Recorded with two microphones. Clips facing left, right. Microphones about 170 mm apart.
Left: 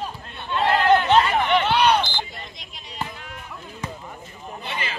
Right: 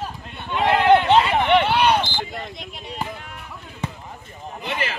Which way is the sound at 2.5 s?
55° right (ahead or behind).